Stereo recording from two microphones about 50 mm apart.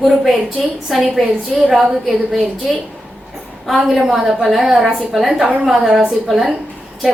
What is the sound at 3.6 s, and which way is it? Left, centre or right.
A woman's voice, centre.